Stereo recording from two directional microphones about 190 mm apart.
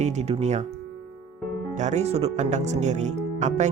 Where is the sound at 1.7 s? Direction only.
40° right (ahead or behind).